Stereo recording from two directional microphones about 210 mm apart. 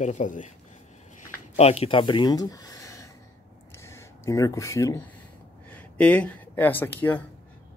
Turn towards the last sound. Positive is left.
turn(degrees=10)  # may be behind; listen again after turning